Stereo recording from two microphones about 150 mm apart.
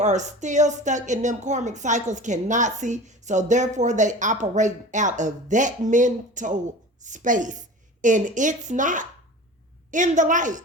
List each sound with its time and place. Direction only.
0.0 s a woman's voice: 50° right (ahead or behind)